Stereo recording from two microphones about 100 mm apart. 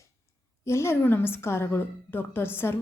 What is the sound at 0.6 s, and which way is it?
A woman's voice, 25° left (ahead or behind).